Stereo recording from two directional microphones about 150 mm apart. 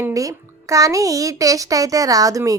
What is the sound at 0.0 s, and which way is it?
A woman's voice, 20° right (ahead or behind).